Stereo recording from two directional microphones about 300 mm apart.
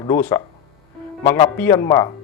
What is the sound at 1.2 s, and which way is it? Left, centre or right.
Speech, centre.